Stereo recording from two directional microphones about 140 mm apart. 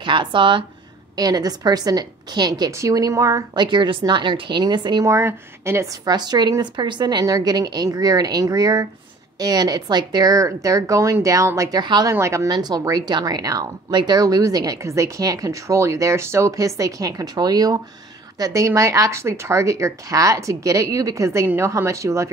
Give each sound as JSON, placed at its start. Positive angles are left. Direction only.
{"t": 0.0, "sound": "speech", "side_deg": -35}
{"t": 5.0, "sound": "speech", "side_deg": -20}
{"t": 6.0, "sound": "speech", "side_deg": -30}
{"t": 11.8, "sound": "speech", "side_deg": -30}
{"t": 12.1, "sound": "speech", "side_deg": -20}